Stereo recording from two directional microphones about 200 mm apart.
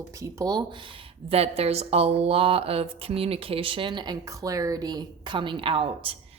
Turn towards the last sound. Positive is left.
turn(degrees=-25)  # may be behind; listen again after turning